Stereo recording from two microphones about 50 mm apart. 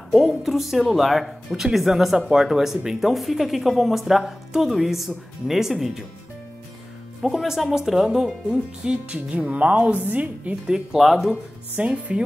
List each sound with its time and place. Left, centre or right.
0.1 s speech: centre
7.2 s speech: centre
11.0 s speech: centre
11.7 s speech: right